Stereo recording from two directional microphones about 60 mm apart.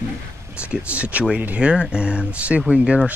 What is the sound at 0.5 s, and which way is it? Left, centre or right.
Speech, centre.